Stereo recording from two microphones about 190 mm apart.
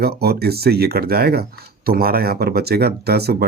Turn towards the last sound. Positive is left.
turn(degrees=-55)  # may be behind; listen again after turning